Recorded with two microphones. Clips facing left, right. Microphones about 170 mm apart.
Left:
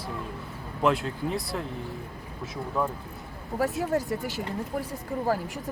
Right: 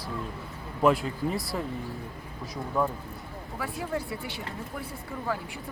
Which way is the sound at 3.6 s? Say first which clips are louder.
Left 6 dB; 45° left (ahead or behind).